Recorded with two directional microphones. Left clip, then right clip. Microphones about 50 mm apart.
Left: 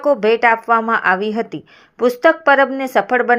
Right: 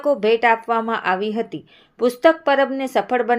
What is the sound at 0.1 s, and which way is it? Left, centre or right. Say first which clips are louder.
A woman's voice: left 3 dB; left.